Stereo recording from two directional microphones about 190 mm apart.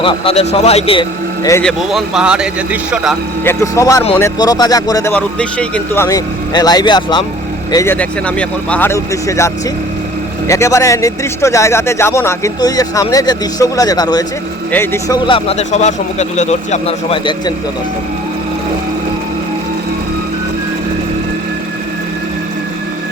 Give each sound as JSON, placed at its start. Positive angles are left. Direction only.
{"t": 0.0, "sound": "speech", "side_deg": 30}
{"t": 1.6, "sound": "speech", "side_deg": 0}
{"t": 3.4, "sound": "speech", "side_deg": 15}
{"t": 10.5, "sound": "speech", "side_deg": 15}
{"t": 15.4, "sound": "speech", "side_deg": 35}